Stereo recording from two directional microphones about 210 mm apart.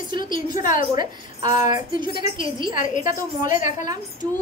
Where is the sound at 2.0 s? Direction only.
25° right (ahead or behind).